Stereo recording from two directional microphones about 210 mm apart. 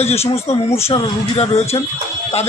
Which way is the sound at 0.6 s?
15° left (ahead or behind).